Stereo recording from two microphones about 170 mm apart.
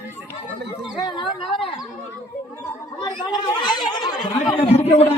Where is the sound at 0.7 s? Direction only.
30° left (ahead or behind).